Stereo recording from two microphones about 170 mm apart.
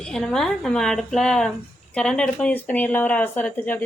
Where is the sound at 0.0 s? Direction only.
5° left (ahead or behind).